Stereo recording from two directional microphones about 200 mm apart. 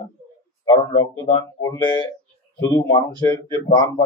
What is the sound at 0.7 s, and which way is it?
Speech, 20° left (ahead or behind).